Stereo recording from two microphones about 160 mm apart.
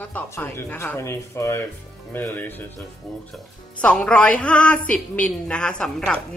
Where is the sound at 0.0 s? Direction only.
10° left (ahead or behind).